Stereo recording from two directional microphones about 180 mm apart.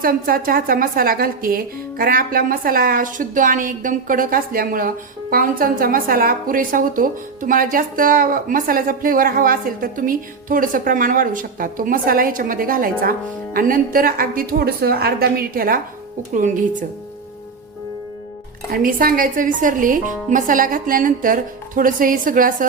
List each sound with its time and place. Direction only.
0.0 s a woman's voice: 55° right (ahead or behind)
18.7 s a woman's voice: 50° right (ahead or behind)